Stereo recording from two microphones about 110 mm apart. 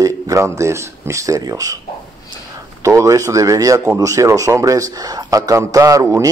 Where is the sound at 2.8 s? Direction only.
25° right (ahead or behind).